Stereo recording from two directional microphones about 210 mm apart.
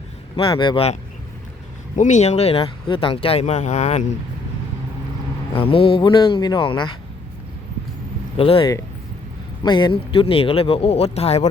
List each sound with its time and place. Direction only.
0.3 s speech: 25° left (ahead or behind)
2.0 s speech: 35° left (ahead or behind)
5.5 s speech: 25° left (ahead or behind)
8.4 s speech: 25° left (ahead or behind)